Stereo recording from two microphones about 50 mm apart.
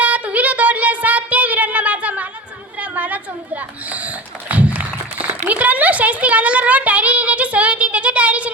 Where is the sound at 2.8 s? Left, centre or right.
Right.